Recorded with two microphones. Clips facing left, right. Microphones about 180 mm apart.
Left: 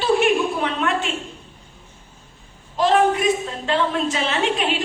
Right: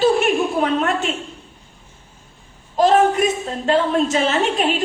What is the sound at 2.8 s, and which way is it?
A woman's voice, 45° right (ahead or behind).